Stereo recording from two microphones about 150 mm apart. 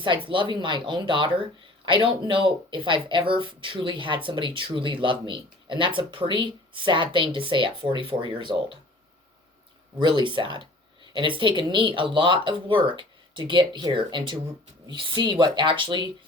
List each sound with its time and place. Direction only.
0.3 s speech: 35° right (ahead or behind)
10.0 s speech: 30° right (ahead or behind)